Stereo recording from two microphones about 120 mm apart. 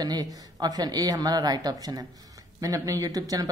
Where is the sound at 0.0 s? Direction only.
35° right (ahead or behind).